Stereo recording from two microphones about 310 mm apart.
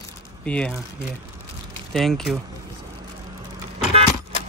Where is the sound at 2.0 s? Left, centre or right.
Centre.